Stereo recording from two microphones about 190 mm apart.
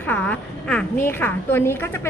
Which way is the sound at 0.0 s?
10° left (ahead or behind).